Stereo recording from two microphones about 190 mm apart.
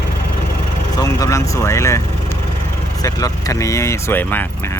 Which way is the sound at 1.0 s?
15° left (ahead or behind).